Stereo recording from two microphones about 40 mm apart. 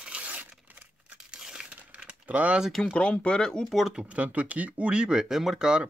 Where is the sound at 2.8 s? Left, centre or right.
Left.